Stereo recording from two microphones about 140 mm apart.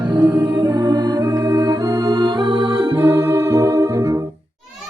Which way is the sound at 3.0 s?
20° right (ahead or behind).